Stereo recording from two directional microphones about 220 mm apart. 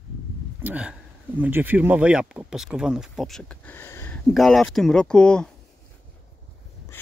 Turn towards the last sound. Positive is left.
turn(degrees=5)  # may be behind; listen again after turning